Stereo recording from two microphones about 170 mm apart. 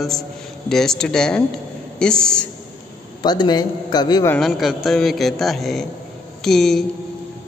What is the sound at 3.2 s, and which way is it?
A man's voice, 25° left (ahead or behind).